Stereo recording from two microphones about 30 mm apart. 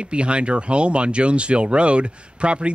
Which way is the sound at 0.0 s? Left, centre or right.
Right.